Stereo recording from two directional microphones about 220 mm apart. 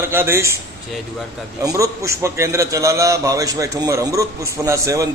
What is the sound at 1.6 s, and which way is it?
A man's voice, 15° right (ahead or behind).